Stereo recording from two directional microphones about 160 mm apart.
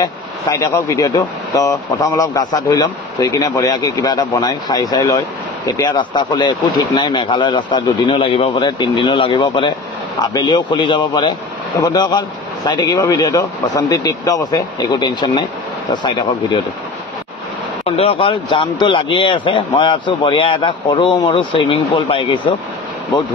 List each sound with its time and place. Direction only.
0.0 s speech: 20° left (ahead or behind)
17.8 s a man's voice: 40° left (ahead or behind)